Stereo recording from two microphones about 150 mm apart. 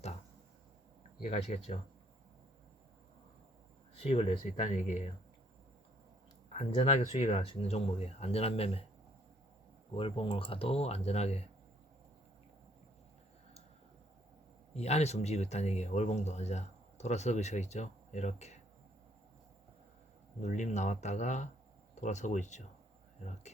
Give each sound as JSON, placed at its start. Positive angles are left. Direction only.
{"t": 1.3, "sound": "speech", "side_deg": 45}
{"t": 3.9, "sound": "speech", "side_deg": 40}
{"t": 6.5, "sound": "speech", "side_deg": 45}
{"t": 9.9, "sound": "speech", "side_deg": 35}
{"t": 14.7, "sound": "speech", "side_deg": 45}
{"t": 20.4, "sound": "speech", "side_deg": 50}